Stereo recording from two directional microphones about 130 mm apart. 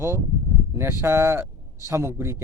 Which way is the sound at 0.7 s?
20° right (ahead or behind).